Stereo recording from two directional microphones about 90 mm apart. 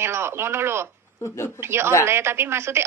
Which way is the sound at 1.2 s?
30° left (ahead or behind).